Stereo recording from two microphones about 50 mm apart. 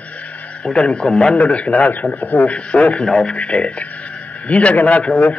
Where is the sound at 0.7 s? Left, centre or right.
Left.